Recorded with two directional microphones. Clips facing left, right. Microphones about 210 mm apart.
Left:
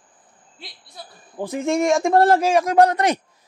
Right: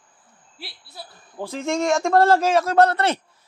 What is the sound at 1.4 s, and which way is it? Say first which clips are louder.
A man's voice: left 3 dB; 15° left (ahead or behind).